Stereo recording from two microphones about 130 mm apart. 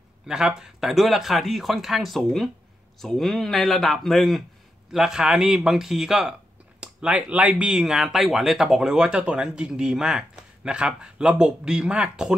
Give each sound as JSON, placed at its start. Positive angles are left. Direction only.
{"t": 0.3, "sound": "speech", "side_deg": -5}